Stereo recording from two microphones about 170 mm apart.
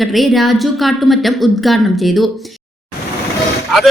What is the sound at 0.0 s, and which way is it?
Speech, centre (ahead or behind).